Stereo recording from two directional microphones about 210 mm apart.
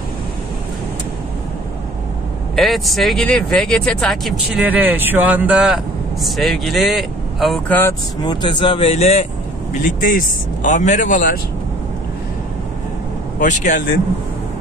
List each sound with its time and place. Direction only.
2.5 s speech: centre (ahead or behind); by 11.3 s 40° left (ahead or behind)
13.4 s speech: 35° left (ahead or behind)